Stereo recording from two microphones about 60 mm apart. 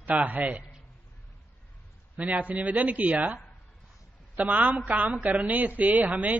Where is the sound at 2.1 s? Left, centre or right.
Right.